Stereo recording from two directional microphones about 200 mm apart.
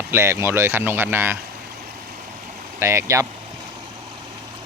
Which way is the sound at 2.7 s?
15° right (ahead or behind).